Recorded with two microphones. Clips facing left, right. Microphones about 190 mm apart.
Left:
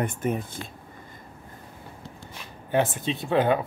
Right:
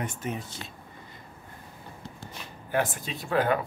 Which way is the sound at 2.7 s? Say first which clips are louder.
Left 4 dB; 25° left (ahead or behind).